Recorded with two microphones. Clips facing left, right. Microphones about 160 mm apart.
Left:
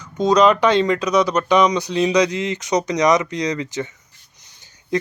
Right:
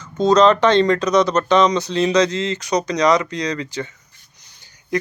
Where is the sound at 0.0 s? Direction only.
10° left (ahead or behind).